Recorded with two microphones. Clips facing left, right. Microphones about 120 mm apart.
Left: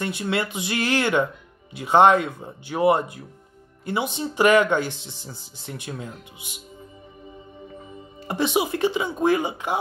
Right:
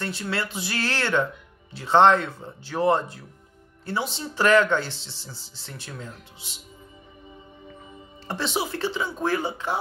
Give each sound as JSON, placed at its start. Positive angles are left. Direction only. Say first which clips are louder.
{"t": 0.0, "sound": "speech", "louder": "left 4 dB", "side_deg": 15}
{"t": 8.3, "sound": "speech", "louder": "left 5 dB", "side_deg": 15}